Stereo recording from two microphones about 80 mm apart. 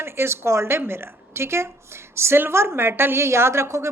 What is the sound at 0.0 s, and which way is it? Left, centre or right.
A woman's voice, right.